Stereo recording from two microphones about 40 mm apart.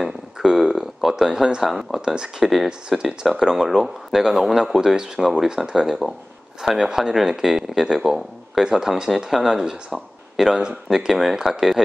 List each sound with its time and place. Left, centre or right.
0.4 s speech: centre
1.7 s speech: centre
2.0 s speech: centre
2.4 s speech: centre